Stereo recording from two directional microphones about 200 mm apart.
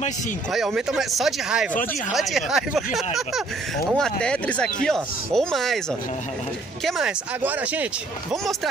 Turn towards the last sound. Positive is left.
turn(degrees=-5)  # may be behind; listen again after turning